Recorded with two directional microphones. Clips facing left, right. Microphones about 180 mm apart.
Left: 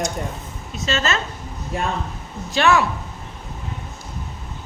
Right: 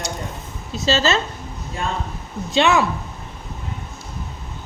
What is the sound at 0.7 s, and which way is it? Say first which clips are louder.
Speech: right 4 dB; 35° right (ahead or behind).